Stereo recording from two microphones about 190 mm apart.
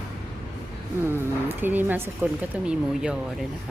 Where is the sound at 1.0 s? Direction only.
10° right (ahead or behind).